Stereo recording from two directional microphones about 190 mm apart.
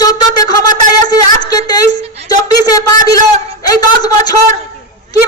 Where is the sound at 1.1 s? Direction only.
20° left (ahead or behind).